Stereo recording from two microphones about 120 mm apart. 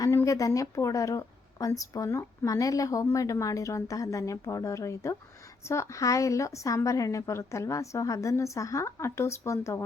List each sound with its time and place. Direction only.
0.0 s a woman's voice: 25° left (ahead or behind)